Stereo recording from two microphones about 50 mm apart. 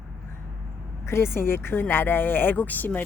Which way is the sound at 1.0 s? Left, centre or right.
Left.